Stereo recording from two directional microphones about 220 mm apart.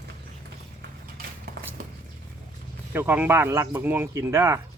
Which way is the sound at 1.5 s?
45° right (ahead or behind).